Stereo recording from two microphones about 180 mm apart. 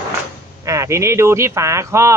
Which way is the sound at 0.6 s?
15° right (ahead or behind).